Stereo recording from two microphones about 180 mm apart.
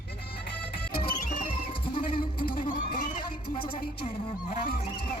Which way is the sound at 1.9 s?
30° left (ahead or behind).